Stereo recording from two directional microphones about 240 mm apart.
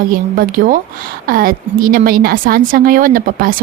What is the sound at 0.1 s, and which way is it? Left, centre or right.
Speech, right.